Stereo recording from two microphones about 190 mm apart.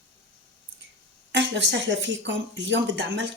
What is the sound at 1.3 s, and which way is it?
A woman's voice, 70° right (ahead or behind).